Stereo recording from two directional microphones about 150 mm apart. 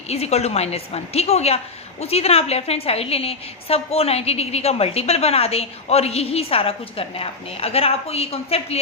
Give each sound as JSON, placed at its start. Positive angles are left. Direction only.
{"t": 0.1, "sound": "a woman's voice", "side_deg": 45}